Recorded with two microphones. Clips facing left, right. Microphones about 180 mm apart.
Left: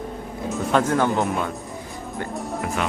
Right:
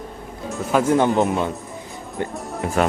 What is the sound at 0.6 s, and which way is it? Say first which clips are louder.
Music: right 2 dB; 5° right (ahead or behind).